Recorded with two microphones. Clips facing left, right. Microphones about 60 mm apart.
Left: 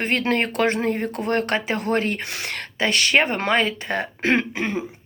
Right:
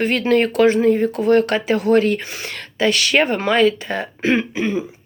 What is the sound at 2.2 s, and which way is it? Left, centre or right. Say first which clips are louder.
Speech: even; left.